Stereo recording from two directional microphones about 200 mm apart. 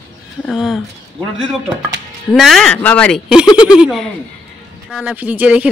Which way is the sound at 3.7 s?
Centre (ahead or behind).